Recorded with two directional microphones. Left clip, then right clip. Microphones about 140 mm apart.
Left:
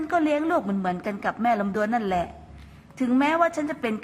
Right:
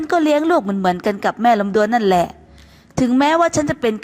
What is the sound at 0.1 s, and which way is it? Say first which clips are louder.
A woman's voice: right 8 dB; 55° right (ahead or behind).